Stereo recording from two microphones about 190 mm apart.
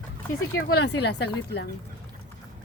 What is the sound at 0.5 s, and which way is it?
Speech, 60° left (ahead or behind).